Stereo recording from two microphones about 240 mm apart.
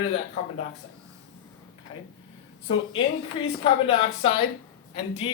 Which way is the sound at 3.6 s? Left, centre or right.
Left.